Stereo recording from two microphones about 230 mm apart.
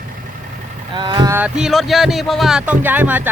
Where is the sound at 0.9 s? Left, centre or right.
Centre.